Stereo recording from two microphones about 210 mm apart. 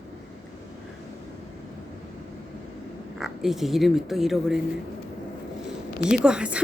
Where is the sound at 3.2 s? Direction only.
Centre (ahead or behind).